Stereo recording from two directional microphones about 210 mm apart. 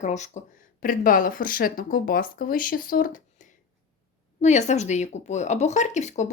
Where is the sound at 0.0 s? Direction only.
35° left (ahead or behind).